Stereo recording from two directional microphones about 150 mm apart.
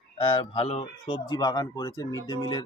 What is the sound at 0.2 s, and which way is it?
Speech, 35° left (ahead or behind).